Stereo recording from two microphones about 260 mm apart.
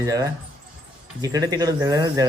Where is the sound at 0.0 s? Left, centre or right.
Centre.